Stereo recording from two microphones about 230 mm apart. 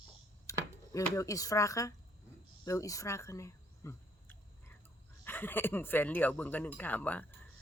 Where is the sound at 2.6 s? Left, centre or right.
Centre.